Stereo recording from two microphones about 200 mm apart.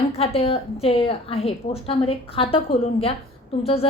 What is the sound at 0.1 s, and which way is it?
A woman's voice, 30° left (ahead or behind).